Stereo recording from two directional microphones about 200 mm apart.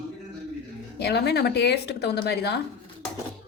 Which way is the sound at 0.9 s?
55° left (ahead or behind).